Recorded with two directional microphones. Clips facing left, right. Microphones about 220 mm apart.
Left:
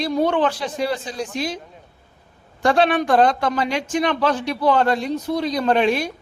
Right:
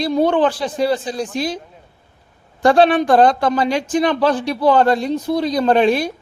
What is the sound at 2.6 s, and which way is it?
Speech, 35° right (ahead or behind).